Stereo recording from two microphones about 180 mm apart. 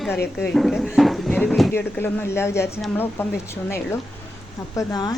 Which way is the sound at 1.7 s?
10° left (ahead or behind).